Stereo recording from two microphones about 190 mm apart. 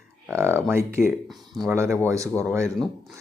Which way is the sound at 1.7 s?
15° right (ahead or behind).